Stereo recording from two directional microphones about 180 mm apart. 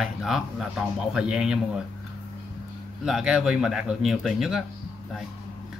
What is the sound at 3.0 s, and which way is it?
Speech, 5° right (ahead or behind).